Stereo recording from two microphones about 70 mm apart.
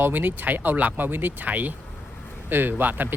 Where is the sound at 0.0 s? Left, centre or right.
Right.